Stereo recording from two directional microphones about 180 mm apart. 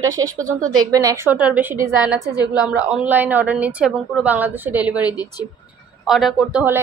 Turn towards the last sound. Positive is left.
turn(degrees=-5)  # may be behind; listen again after turning